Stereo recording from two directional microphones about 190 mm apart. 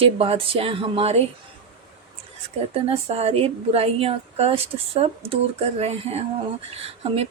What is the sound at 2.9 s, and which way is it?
A woman's voice, 30° right (ahead or behind).